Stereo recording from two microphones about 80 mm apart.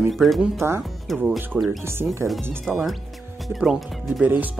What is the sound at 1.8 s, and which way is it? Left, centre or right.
Speech, right.